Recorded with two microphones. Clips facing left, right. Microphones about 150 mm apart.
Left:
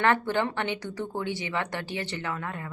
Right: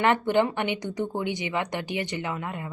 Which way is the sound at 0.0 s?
15° right (ahead or behind).